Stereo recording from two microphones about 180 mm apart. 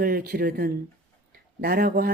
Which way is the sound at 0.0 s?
50° right (ahead or behind).